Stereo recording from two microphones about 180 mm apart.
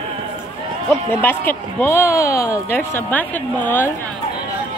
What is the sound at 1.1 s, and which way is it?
Speech, 10° left (ahead or behind).